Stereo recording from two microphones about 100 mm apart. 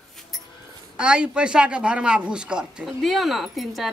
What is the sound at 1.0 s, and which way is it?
Speech, 10° right (ahead or behind).